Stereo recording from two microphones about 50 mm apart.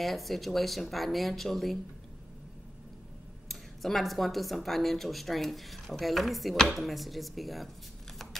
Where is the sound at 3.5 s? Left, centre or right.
Centre.